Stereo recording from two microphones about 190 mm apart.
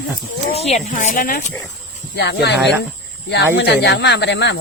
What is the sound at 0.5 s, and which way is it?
Speech, 35° left (ahead or behind).